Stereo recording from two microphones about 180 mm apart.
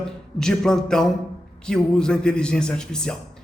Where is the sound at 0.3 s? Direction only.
5° left (ahead or behind).